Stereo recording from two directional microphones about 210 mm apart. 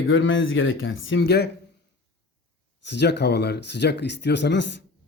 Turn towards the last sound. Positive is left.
turn(degrees=55)  # may be behind; listen again after turning